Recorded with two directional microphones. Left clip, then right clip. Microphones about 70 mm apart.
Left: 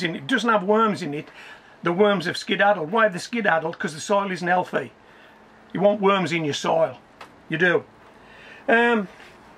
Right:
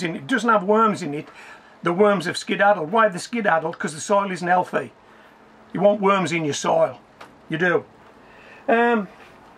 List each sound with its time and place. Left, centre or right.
0.0 s speech: centre
8.6 s speech: left